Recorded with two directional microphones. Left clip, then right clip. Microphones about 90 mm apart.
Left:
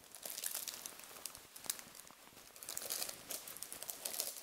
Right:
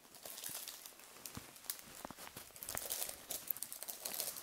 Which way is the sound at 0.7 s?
30° left (ahead or behind).